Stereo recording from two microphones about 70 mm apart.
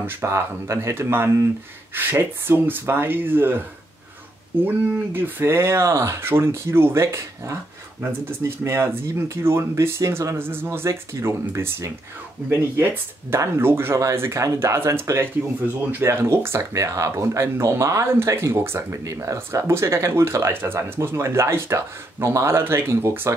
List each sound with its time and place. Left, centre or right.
0.2 s speech: right
4.6 s speech: right
10.4 s speech: right